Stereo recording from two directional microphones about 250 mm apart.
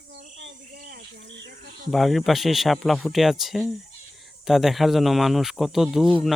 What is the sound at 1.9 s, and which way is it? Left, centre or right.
Speech, centre.